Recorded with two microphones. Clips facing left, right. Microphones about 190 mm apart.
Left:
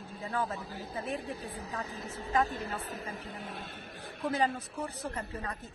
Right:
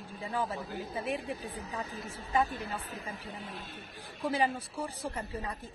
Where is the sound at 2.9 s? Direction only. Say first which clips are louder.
Left 1 dB; 45° left (ahead or behind).